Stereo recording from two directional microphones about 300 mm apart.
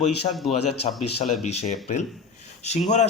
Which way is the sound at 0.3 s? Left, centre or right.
Centre.